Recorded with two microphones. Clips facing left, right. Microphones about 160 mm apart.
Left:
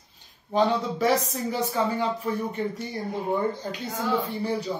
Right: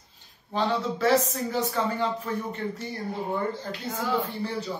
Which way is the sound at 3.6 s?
15° left (ahead or behind).